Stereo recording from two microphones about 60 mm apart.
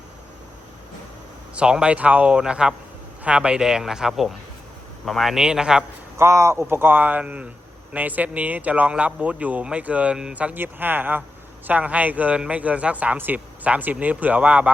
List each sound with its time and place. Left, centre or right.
1.5 s speech: centre
5.0 s speech: centre
5.3 s speech: centre
6.1 s speech: right
10.6 s speech: right